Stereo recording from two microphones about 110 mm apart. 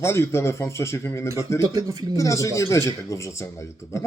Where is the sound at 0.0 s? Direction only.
25° left (ahead or behind).